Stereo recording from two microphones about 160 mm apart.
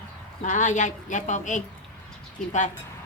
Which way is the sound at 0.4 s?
50° left (ahead or behind).